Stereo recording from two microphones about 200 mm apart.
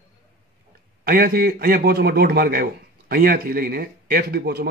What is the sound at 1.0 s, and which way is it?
A man's voice, 50° right (ahead or behind).